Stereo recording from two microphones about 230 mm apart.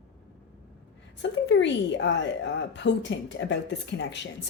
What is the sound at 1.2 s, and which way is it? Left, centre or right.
A woman's voice, left.